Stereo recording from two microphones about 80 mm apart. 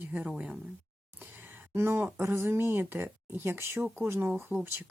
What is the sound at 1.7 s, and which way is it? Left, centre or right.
Speech, right.